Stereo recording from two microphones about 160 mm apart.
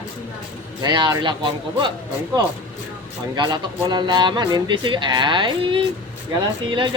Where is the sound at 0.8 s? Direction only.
25° right (ahead or behind).